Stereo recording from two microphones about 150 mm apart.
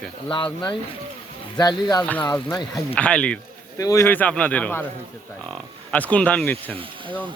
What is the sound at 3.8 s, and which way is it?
Speech, 20° left (ahead or behind).